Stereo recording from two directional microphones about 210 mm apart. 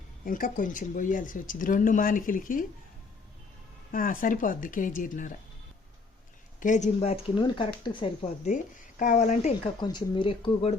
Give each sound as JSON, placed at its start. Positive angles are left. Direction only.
{"t": 0.3, "sound": "speech", "side_deg": 40}
{"t": 3.9, "sound": "speech", "side_deg": 40}
{"t": 6.6, "sound": "speech", "side_deg": 35}
{"t": 8.4, "sound": "speech", "side_deg": 35}
{"t": 9.8, "sound": "speech", "side_deg": 20}